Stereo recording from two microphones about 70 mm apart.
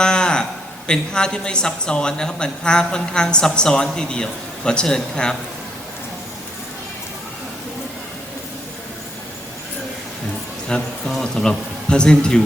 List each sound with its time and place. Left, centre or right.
0.0 s a sound: centre
0.9 s speech: centre
10.7 s speech: centre